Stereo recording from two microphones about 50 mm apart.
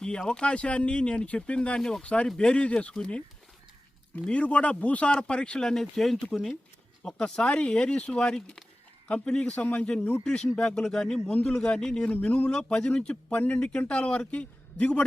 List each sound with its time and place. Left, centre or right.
0.0 s speech: centre
7.4 s speech: left